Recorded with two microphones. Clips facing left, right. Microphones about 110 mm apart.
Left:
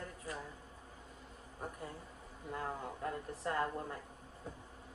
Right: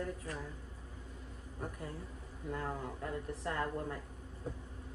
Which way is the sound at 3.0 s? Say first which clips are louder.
Right 1 dB; 25° left (ahead or behind).